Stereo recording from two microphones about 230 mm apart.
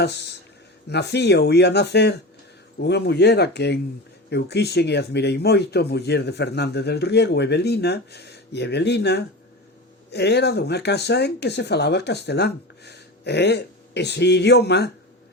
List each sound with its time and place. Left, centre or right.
0.0 s speech: left